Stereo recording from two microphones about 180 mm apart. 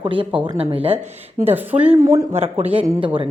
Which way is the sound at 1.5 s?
10° right (ahead or behind).